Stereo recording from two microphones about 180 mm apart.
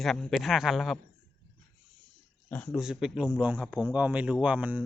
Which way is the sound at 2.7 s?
5° right (ahead or behind).